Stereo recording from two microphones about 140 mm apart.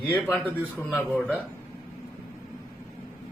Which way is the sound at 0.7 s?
15° left (ahead or behind).